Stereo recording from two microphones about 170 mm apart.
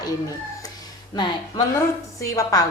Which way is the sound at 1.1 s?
25° left (ahead or behind).